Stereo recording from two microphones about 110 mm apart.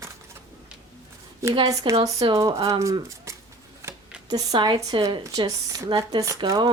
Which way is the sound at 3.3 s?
25° right (ahead or behind).